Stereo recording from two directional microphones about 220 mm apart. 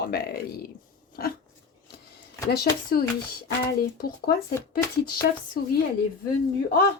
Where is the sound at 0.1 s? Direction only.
45° left (ahead or behind).